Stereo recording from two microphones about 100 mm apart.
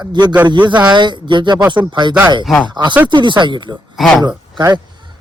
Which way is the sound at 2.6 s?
50° right (ahead or behind).